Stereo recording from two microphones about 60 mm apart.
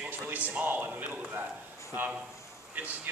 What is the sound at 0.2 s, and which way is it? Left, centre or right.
Speech, right.